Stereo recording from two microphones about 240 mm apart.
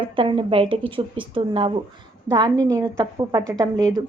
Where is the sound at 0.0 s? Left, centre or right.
Right.